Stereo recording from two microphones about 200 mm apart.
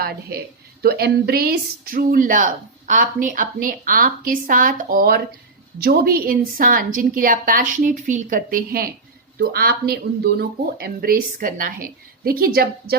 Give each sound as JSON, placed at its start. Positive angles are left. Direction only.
{"t": 0.0, "sound": "a woman's voice", "side_deg": -50}